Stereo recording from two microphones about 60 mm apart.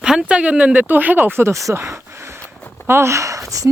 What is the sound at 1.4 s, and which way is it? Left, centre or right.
Speech, right.